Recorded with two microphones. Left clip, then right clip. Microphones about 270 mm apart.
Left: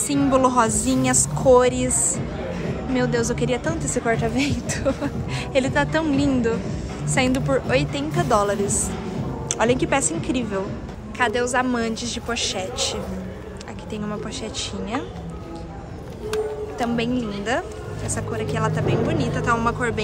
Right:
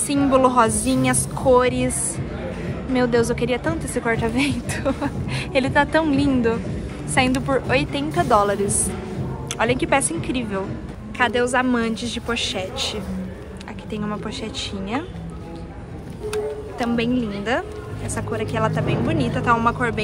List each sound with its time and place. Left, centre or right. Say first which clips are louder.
0.1 s a woman's voice: right 2 dB; centre
2.9 s a woman's voice: right 4 dB; centre
16.7 s a woman's voice: right 2 dB; centre